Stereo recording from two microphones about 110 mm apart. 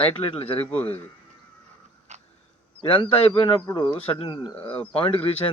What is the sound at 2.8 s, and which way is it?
Speech, 55° left (ahead or behind).